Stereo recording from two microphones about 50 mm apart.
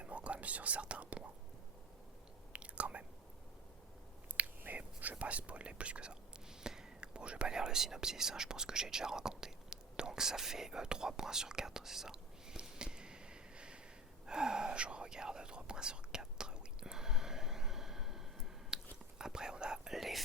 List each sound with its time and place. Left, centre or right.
0.0 s speech: right
2.5 s chewing: right
4.6 s whispering: right
5.2 s speech: right
14.3 s whispering: centre
19.9 s whispering: centre